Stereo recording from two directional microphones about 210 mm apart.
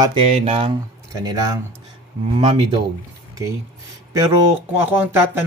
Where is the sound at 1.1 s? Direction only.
15° right (ahead or behind).